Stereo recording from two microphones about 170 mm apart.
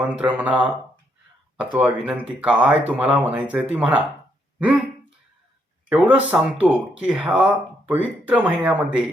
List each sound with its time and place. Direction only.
0.0 s speech: 10° right (ahead or behind)
5.9 s speech: 10° right (ahead or behind)